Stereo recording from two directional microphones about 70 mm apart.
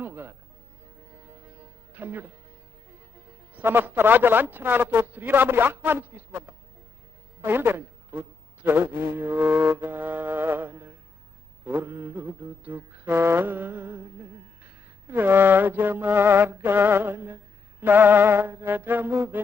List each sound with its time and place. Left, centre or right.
0.0 s speech: right
1.1 s music: right
2.9 s a man's voice: right
7.4 s mantra: right